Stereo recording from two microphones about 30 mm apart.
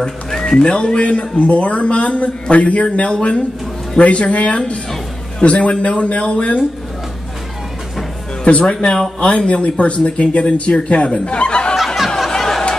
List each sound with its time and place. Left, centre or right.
0.0 s speech: centre
0.6 s a man's voice: left
8.5 s a man's voice: left
11.7 s snicker: centre
12.3 s chatter: centre